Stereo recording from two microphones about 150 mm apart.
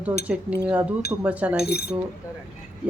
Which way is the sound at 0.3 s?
10° right (ahead or behind).